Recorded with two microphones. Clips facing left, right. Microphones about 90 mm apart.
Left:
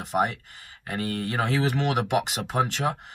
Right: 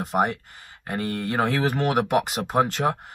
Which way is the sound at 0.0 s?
40° right (ahead or behind).